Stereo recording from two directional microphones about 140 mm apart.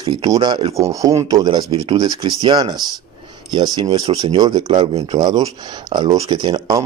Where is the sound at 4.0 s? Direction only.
45° right (ahead or behind).